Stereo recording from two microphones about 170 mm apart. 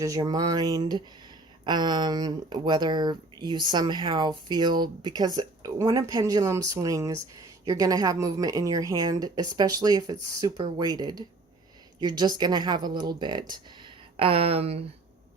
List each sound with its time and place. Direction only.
0.0 s speech: 20° right (ahead or behind); by 14.8 s 35° right (ahead or behind)